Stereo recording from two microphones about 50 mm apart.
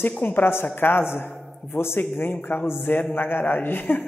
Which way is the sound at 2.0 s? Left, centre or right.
Left.